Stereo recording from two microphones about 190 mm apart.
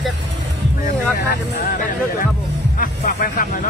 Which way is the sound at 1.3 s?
45° left (ahead or behind).